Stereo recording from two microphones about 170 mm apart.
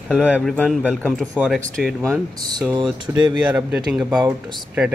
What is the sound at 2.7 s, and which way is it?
Speech, 25° right (ahead or behind).